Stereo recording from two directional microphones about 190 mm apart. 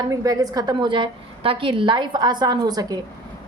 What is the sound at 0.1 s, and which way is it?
A woman's voice, 20° right (ahead or behind).